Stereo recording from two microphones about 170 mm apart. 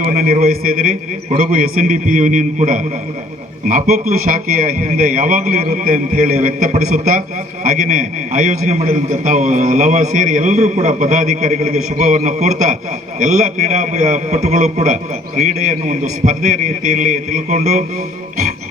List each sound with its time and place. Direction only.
0.0 s a man's voice: 50° right (ahead or behind)